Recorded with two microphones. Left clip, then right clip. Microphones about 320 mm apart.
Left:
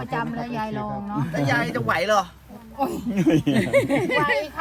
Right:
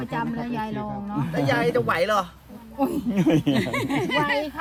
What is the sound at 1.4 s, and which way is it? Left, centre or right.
Speech, centre.